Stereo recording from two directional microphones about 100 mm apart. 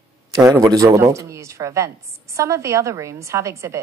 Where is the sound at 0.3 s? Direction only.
30° right (ahead or behind).